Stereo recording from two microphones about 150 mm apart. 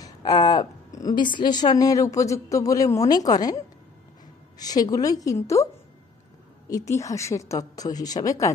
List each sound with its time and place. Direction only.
0.0 s a woman's voice: 25° left (ahead or behind)
6.7 s a woman's voice: 20° left (ahead or behind)